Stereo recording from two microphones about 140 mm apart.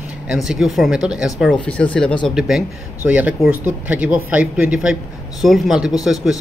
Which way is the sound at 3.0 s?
10° right (ahead or behind).